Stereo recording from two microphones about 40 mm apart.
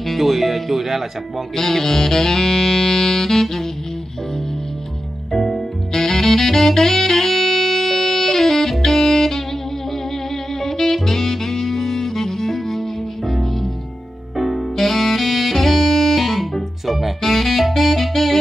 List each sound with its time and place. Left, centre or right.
0.0 s speech: centre
1.6 s saxophone: centre
5.3 s saxophone: centre
10.6 s saxophone: centre
14.3 s music: centre